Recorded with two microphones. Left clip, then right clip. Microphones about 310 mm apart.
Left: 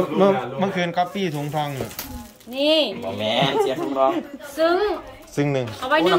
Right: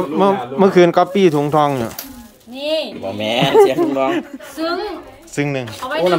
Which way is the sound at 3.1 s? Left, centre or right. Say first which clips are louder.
Right 8 dB; right.